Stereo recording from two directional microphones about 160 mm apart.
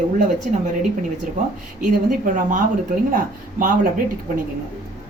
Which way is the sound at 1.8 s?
55° right (ahead or behind).